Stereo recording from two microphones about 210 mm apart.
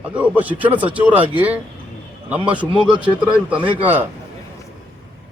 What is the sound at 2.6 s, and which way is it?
Speech, 25° right (ahead or behind).